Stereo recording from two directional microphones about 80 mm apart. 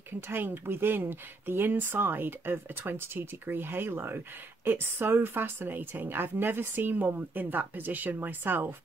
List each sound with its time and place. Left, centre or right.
0.3 s a woman's voice: right